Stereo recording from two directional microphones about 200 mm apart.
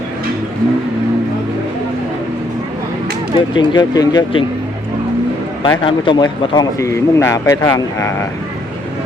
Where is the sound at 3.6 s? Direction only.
20° left (ahead or behind).